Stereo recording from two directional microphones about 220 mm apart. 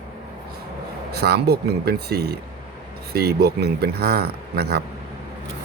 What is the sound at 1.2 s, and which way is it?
Speech, 45° right (ahead or behind).